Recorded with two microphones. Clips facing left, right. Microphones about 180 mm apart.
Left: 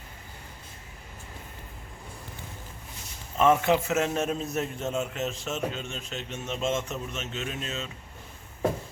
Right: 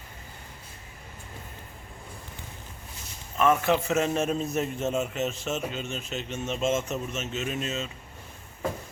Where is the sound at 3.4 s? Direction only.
20° left (ahead or behind).